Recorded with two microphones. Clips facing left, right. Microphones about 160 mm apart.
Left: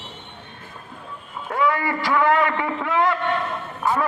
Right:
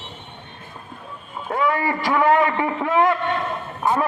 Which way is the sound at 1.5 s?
20° right (ahead or behind).